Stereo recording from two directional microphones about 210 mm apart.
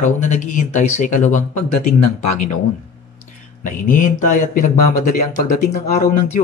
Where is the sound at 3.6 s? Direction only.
40° left (ahead or behind).